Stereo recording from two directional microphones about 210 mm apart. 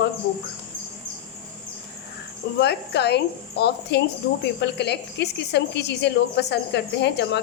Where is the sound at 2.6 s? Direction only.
50° left (ahead or behind).